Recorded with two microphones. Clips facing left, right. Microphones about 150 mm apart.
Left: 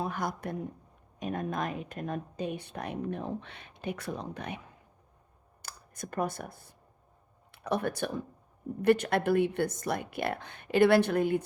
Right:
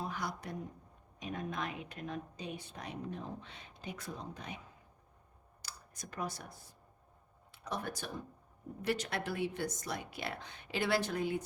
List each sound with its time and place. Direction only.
0.0 s speech: 55° left (ahead or behind)
5.6 s speech: 55° left (ahead or behind)